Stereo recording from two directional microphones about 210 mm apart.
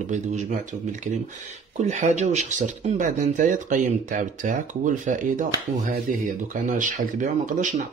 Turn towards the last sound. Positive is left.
turn(degrees=-35)  # may be behind; listen again after turning